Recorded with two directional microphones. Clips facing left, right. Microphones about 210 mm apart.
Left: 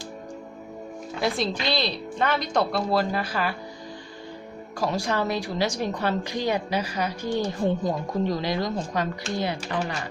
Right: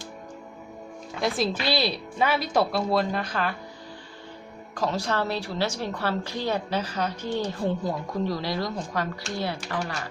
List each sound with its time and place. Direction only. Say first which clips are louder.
1.2 s a woman's voice: even; 5° right (ahead or behind)
4.7 s a woman's voice: left 1 dB; 10° left (ahead or behind)